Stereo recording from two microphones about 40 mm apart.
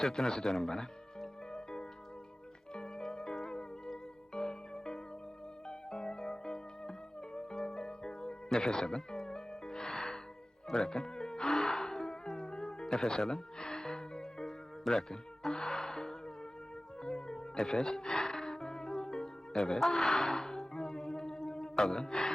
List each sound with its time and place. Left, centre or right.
0.0 s a man's voice: centre
1.5 s music: centre
8.6 s music: centre
17.7 s a man's voice: centre
18.0 s music: centre
19.7 s a sound: centre